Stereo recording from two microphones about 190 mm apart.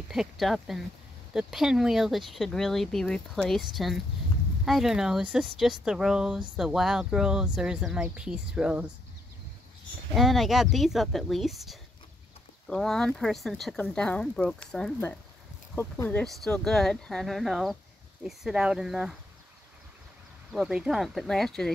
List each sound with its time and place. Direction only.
0.1 s speech: centre (ahead or behind)
10.1 s speech: centre (ahead or behind)
20.5 s speech: 5° right (ahead or behind)